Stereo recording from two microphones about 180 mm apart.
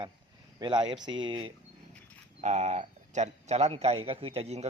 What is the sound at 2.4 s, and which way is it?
Speech, 40° right (ahead or behind).